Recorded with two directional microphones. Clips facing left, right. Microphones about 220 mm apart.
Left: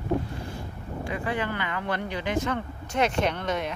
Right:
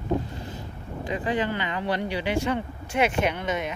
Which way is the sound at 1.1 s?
20° right (ahead or behind).